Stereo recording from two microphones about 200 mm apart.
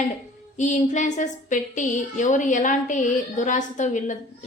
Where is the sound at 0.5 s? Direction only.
40° left (ahead or behind).